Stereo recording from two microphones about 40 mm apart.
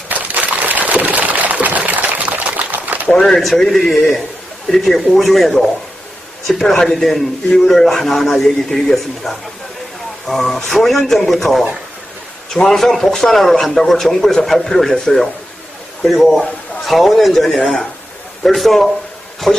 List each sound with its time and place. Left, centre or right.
0.1 s a sound: right
3.1 s a man's voice: centre
3.7 s a man's voice: centre